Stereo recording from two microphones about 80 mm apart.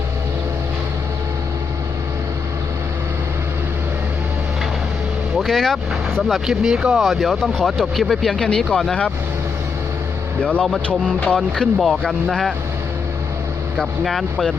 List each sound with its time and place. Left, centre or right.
5.4 s speech: centre
10.4 s music: centre
11.3 s speech: centre
13.7 s speech: centre